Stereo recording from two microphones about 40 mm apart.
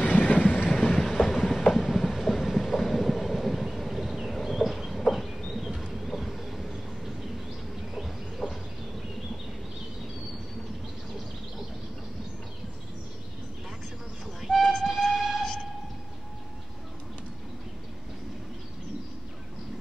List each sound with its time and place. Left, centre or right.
0.0 s train: left
0.7 s train: centre
5.6 s a sound: centre
5.9 s vehicle: centre
7.9 s bird: centre
14.2 s train: centre